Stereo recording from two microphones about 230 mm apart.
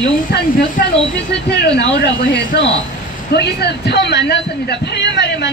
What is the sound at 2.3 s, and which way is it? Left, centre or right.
Speech, left.